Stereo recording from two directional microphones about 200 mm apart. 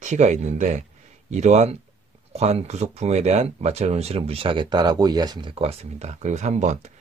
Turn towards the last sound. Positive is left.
turn(degrees=-35)  # may be behind; listen again after turning